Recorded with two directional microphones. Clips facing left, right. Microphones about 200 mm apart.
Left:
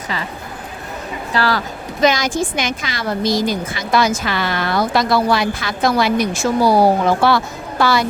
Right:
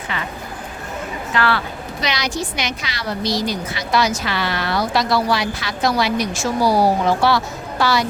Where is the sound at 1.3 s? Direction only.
35° left (ahead or behind); by 8.0 s 50° left (ahead or behind).